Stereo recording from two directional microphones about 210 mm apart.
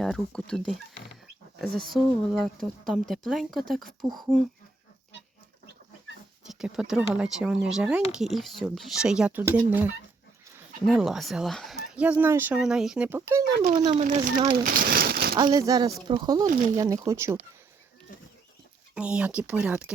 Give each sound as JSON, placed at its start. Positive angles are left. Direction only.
{"t": 0.0, "sound": "speech", "side_deg": 0}
{"t": 6.5, "sound": "speech", "side_deg": 0}
{"t": 13.9, "sound": "speech", "side_deg": -35}
{"t": 14.5, "sound": "crumpling", "side_deg": -45}
{"t": 15.4, "sound": "speech", "side_deg": -20}
{"t": 18.9, "sound": "speech", "side_deg": -5}